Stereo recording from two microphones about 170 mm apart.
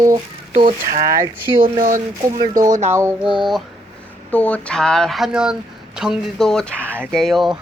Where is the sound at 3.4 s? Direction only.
Centre (ahead or behind).